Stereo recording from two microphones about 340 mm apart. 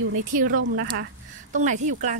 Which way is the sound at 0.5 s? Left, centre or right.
Right.